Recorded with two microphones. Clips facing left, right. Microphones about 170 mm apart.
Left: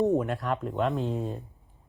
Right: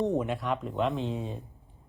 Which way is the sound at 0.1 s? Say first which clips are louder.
Left 2 dB; centre (ahead or behind).